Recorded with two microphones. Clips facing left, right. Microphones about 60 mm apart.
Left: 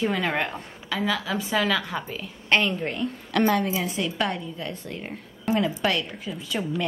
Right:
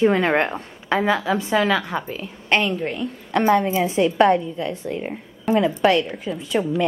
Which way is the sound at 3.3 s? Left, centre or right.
Right.